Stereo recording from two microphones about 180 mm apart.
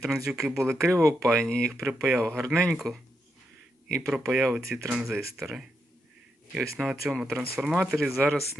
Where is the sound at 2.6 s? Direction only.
Centre (ahead or behind).